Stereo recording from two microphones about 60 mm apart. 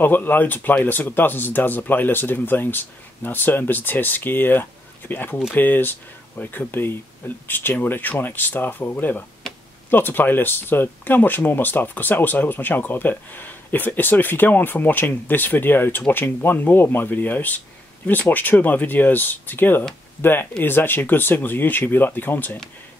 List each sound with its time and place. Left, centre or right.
0.0 s speech: left
9.5 s a sound: centre
9.8 s speech: left